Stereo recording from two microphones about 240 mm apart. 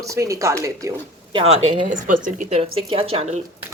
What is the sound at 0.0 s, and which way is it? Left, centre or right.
Speech, centre.